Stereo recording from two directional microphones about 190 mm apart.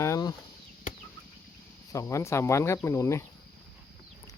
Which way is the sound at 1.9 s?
15° left (ahead or behind).